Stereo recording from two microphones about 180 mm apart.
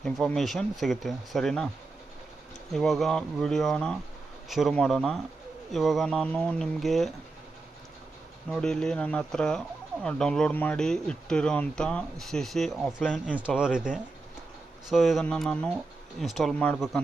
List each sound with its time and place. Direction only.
0.0 s speech: centre (ahead or behind)
2.7 s speech: centre (ahead or behind)
8.4 s speech: 5° left (ahead or behind)
13.2 s speech: 5° right (ahead or behind)